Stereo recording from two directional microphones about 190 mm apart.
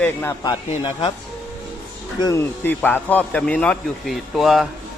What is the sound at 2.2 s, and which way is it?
Speech, 20° left (ahead or behind).